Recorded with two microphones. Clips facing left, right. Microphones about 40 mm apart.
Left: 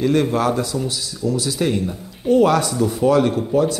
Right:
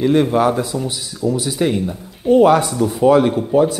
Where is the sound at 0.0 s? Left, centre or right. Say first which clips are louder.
Right 3 dB; centre.